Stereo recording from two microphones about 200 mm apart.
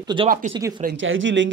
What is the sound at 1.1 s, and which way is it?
Speech, 70° right (ahead or behind).